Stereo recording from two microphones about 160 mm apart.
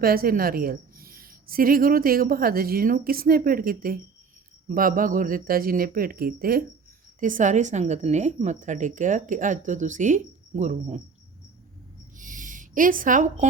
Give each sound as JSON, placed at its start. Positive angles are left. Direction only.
{"t": 0.0, "sound": "a woman's voice", "side_deg": -65}
{"t": 7.2, "sound": "a woman's voice", "side_deg": -55}
{"t": 12.1, "sound": "a sound", "side_deg": -55}